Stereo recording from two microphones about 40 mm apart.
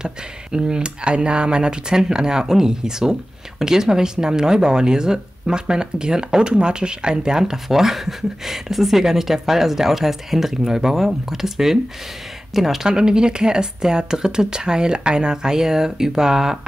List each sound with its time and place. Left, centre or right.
0.0 s speech: centre
12.8 s speech: centre